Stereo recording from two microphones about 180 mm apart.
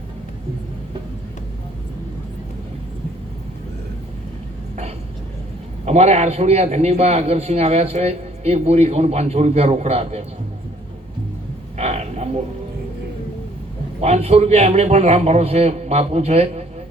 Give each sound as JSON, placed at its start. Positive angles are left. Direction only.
{"t": 5.8, "sound": "a man's voice", "side_deg": -40}
{"t": 11.8, "sound": "a sound", "side_deg": -40}
{"t": 14.0, "sound": "a man's voice", "side_deg": -35}